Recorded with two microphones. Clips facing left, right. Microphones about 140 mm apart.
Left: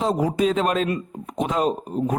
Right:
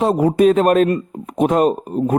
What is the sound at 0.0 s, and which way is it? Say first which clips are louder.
Speech: right 7 dB; 60° right (ahead or behind).